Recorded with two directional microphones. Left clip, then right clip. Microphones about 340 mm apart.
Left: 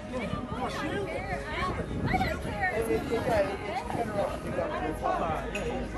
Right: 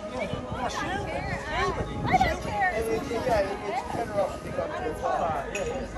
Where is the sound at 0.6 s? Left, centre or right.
Centre; by 4.2 s right.